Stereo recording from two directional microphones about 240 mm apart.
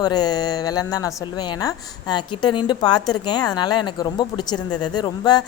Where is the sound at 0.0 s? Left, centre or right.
Centre.